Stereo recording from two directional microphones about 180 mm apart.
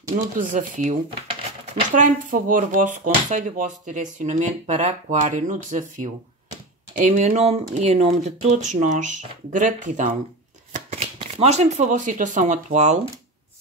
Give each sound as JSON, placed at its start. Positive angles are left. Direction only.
{"t": 0.4, "sound": "speech", "side_deg": -45}
{"t": 10.7, "sound": "shuffling cards", "side_deg": -40}
{"t": 11.1, "sound": "speech", "side_deg": -35}